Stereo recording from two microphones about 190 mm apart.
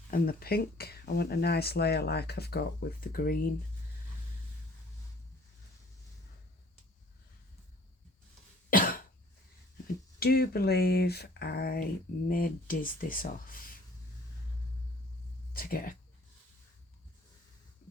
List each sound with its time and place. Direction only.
0.1 s speech: 50° left (ahead or behind)
8.7 s cough: 50° left (ahead or behind)
10.2 s speech: 55° left (ahead or behind)
15.5 s speech: 50° left (ahead or behind)